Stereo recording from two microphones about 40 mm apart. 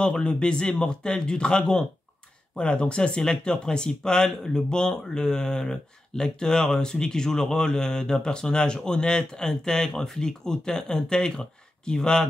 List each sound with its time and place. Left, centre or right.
0.0 s a man's voice: left
3.2 s a man's voice: centre